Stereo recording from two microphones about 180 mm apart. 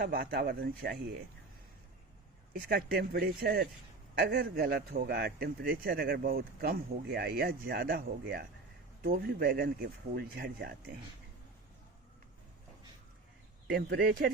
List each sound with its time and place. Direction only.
0.0 s speech: 65° right (ahead or behind)
2.5 s speech: 60° right (ahead or behind)
13.7 s speech: 55° right (ahead or behind)